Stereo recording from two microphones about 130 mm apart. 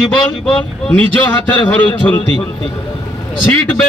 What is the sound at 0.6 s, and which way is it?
Speech, 10° left (ahead or behind).